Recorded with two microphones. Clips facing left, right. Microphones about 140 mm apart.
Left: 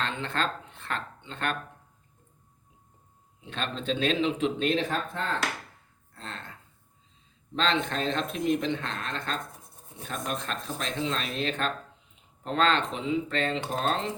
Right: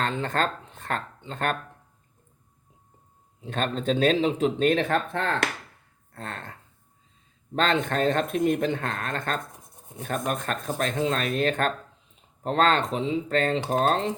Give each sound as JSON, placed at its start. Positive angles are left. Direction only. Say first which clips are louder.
{"t": 0.0, "sound": "speech", "louder": "right 4 dB", "side_deg": -45}
{"t": 3.4, "sound": "speech", "louder": "right 6 dB", "side_deg": -45}
{"t": 6.1, "sound": "speech", "louder": "right 4 dB", "side_deg": -50}